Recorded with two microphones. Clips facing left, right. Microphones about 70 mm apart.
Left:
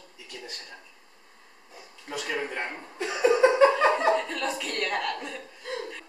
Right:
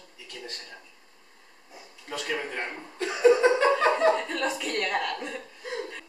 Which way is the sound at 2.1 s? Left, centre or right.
Centre.